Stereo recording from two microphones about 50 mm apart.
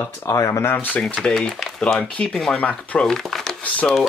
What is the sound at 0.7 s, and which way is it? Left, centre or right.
Speech, left.